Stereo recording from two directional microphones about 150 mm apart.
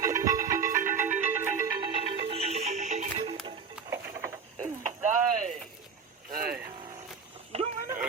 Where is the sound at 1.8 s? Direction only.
40° right (ahead or behind).